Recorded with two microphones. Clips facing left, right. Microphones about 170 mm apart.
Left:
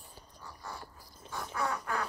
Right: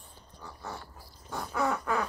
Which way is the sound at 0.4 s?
70° right (ahead or behind).